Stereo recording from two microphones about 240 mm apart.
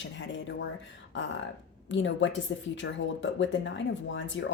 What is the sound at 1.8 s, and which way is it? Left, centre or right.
Speech, left.